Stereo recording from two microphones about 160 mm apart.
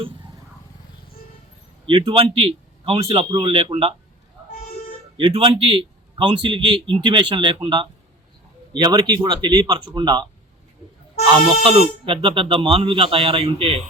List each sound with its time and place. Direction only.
1.9 s speech: 35° right (ahead or behind)
5.2 s speech: 35° right (ahead or behind)
11.3 s speech: 35° right (ahead or behind)